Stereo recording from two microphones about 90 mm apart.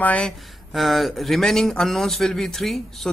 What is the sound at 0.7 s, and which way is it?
Speech, centre (ahead or behind).